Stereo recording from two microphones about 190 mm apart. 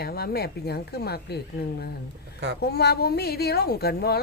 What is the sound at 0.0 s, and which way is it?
A woman's voice, 55° left (ahead or behind).